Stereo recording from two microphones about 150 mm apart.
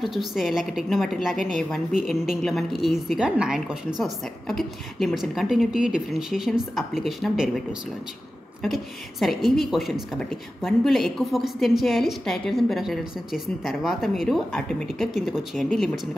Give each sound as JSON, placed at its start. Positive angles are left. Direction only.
{"t": 0.0, "sound": "a woman's voice", "side_deg": 0}
{"t": 8.6, "sound": "a woman's voice", "side_deg": 0}